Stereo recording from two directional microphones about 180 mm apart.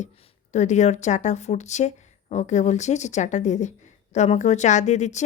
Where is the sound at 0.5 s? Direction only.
40° left (ahead or behind).